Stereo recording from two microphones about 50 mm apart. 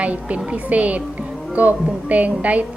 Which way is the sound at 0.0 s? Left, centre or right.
Right.